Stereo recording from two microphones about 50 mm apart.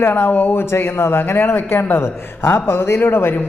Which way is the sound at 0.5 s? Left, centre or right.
Left.